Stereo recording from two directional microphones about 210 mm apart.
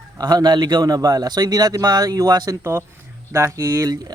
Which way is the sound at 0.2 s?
20° right (ahead or behind).